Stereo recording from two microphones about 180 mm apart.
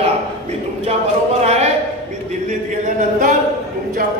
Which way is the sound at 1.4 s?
35° right (ahead or behind).